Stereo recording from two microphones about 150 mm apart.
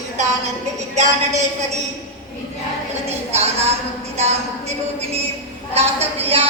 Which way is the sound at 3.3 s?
45° right (ahead or behind).